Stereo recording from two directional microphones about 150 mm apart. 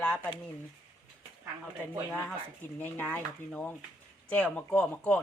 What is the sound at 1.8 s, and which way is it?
Speech, 10° left (ahead or behind).